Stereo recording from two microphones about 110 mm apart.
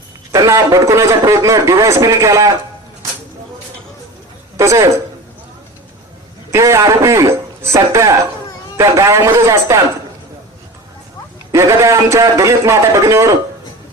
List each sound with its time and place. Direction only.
0.3 s a man's voice: 30° right (ahead or behind)
4.5 s speech: 30° right (ahead or behind)
6.5 s a man's voice: 25° right (ahead or behind)
11.5 s a man's voice: 25° right (ahead or behind)